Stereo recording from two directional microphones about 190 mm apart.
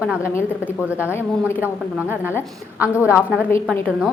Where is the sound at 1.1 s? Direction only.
10° left (ahead or behind).